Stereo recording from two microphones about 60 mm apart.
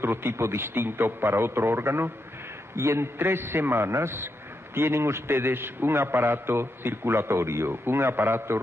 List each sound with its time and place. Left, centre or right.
0.0 s a man's voice: right